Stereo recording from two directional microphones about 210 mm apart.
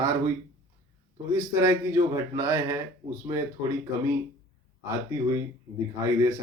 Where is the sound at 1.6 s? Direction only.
15° right (ahead or behind).